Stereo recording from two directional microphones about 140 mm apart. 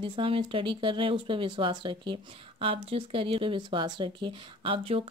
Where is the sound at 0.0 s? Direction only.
40° right (ahead or behind).